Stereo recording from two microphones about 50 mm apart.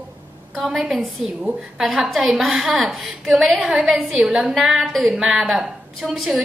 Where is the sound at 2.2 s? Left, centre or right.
Centre.